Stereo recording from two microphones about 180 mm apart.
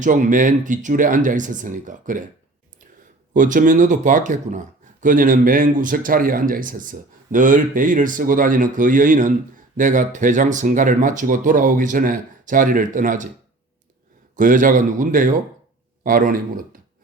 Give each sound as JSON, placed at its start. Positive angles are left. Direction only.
{"t": 0.0, "sound": "speech", "side_deg": -45}
{"t": 3.3, "sound": "speech", "side_deg": -45}
{"t": 14.3, "sound": "speech", "side_deg": -50}